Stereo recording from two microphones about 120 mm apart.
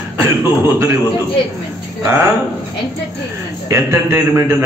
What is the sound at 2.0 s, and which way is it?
Speech, 25° right (ahead or behind).